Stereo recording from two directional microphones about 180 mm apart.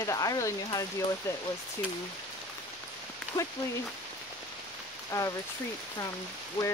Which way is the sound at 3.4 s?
20° left (ahead or behind).